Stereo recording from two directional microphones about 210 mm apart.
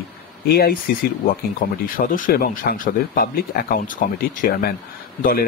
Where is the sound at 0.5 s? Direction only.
50° left (ahead or behind).